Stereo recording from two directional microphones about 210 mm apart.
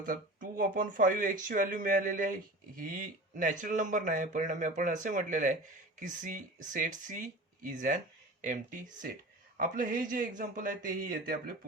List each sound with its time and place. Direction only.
0.0 s speech: 40° right (ahead or behind)